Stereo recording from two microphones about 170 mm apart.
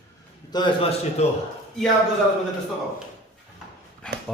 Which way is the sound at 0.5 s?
30° left (ahead or behind).